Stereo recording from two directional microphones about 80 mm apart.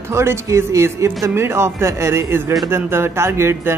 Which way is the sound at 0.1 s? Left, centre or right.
Right.